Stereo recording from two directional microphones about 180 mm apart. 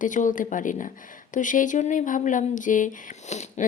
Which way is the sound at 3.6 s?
40° left (ahead or behind).